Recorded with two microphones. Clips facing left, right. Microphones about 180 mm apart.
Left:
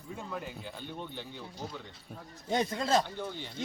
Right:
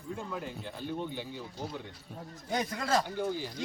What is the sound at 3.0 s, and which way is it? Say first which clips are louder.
Speech: right 5 dB; 10° right (ahead or behind).